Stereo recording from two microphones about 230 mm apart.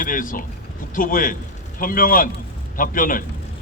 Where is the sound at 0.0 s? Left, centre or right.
Left.